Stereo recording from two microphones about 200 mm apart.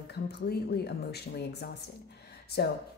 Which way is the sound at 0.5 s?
55° left (ahead or behind).